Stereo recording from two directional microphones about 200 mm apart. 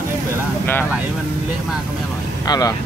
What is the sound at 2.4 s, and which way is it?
Speech, 20° left (ahead or behind).